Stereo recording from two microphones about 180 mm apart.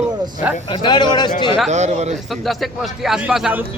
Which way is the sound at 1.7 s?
40° right (ahead or behind).